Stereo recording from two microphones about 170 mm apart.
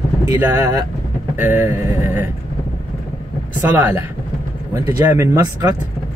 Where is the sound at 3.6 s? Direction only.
15° right (ahead or behind).